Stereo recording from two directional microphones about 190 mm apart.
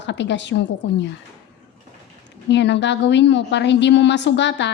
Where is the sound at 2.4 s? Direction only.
70° left (ahead or behind).